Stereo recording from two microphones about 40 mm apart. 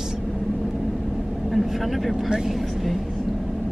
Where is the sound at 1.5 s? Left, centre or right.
Centre.